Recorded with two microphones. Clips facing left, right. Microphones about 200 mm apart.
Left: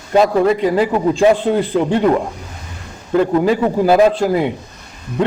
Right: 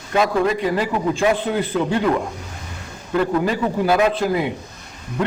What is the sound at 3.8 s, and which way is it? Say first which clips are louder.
Speech: left 6 dB; 40° left (ahead or behind).